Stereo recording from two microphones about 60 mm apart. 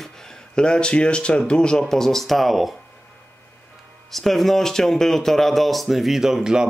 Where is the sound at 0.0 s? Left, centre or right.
Centre.